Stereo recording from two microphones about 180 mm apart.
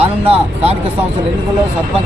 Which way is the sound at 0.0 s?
35° right (ahead or behind).